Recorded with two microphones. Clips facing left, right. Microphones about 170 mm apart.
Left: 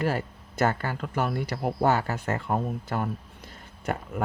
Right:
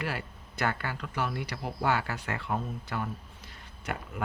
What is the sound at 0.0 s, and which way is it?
Speech, 45° left (ahead or behind).